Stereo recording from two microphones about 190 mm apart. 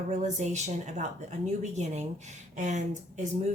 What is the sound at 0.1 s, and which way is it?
A woman's voice, 35° right (ahead or behind).